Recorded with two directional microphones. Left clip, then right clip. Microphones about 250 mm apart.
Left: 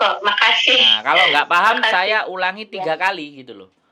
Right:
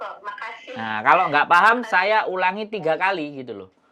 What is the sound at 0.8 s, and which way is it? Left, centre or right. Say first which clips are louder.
Speech: left 4 dB; right.